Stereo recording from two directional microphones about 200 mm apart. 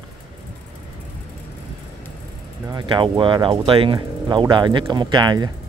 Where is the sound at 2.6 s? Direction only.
25° right (ahead or behind).